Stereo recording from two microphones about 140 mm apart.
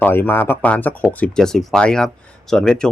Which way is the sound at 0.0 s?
15° left (ahead or behind).